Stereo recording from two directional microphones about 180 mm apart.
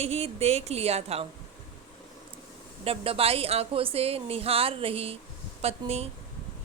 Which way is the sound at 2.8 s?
30° right (ahead or behind).